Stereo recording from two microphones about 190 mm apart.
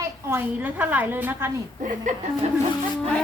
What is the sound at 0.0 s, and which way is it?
A woman's voice, 10° right (ahead or behind).